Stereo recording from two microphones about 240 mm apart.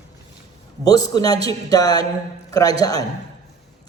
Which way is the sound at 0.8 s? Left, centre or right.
Centre.